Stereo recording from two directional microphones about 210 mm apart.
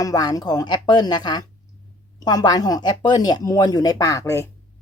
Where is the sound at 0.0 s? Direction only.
20° left (ahead or behind).